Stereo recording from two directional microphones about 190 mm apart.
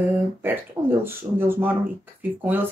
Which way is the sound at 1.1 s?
10° right (ahead or behind).